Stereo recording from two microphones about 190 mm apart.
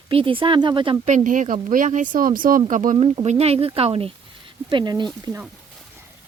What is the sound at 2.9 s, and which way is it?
Speech, 30° right (ahead or behind).